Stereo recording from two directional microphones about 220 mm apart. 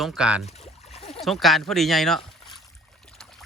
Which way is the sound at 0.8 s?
30° left (ahead or behind).